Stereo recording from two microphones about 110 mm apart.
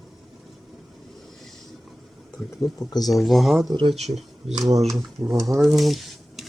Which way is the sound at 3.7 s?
45° right (ahead or behind).